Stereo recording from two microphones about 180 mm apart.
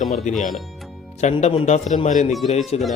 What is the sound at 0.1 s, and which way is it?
Speech, 40° left (ahead or behind).